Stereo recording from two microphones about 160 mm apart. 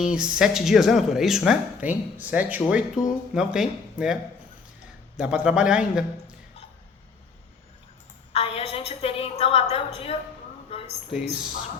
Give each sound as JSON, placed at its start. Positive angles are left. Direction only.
{"t": 0.0, "sound": "speech", "side_deg": -5}
{"t": 8.3, "sound": "a woman's voice", "side_deg": 40}
{"t": 10.7, "sound": "a sound", "side_deg": 40}